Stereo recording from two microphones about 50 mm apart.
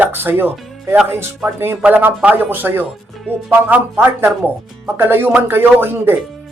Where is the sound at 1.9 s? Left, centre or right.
Right.